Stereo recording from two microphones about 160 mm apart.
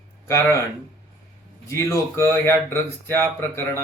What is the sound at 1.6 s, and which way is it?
Speech, 15° left (ahead or behind).